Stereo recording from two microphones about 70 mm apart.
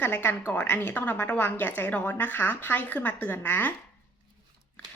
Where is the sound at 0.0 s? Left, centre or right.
Left.